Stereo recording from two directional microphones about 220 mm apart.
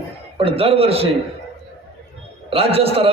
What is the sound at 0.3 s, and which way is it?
Speech, 25° right (ahead or behind).